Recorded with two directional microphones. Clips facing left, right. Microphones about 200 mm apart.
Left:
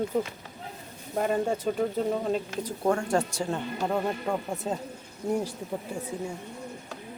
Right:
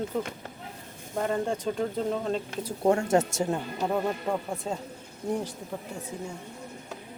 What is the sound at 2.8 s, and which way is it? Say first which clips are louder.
Speech: right 3 dB; 20° right (ahead or behind).